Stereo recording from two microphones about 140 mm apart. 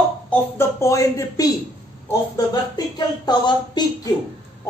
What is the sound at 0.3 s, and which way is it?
Speech, 20° left (ahead or behind).